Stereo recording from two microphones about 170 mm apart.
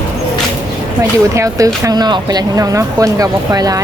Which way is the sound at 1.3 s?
20° right (ahead or behind).